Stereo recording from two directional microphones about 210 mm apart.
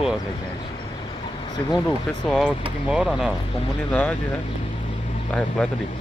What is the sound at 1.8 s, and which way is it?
Speech, 5° left (ahead or behind).